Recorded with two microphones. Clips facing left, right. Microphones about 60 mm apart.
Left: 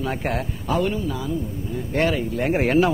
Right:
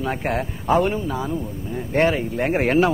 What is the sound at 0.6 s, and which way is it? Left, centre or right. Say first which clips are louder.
Speech: right 4 dB; right.